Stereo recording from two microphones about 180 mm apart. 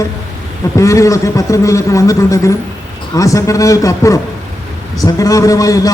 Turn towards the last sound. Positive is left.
turn(degrees=20)  # may be behind; listen again after turning